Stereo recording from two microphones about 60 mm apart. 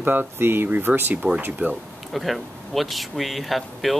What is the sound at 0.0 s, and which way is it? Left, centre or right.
Speech, right.